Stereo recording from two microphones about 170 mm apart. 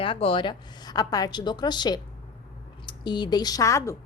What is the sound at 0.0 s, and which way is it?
A woman's voice, 30° left (ahead or behind).